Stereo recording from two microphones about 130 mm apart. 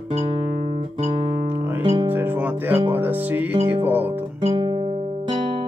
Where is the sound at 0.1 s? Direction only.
55° right (ahead or behind).